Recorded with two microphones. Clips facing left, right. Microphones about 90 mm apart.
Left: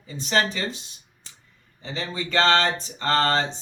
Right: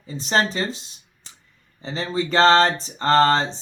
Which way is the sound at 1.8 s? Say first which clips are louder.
Right 6 dB; 35° right (ahead or behind).